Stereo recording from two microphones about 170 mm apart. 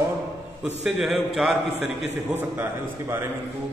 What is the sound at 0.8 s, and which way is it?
Speech, 5° right (ahead or behind).